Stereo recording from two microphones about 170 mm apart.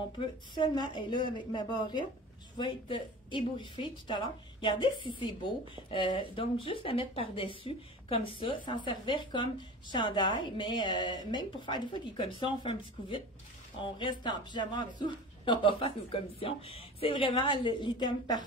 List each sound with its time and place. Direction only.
0.2 s speech: 25° left (ahead or behind)